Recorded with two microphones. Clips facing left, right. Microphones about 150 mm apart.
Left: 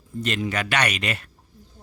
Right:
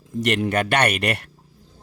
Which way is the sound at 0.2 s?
65° right (ahead or behind).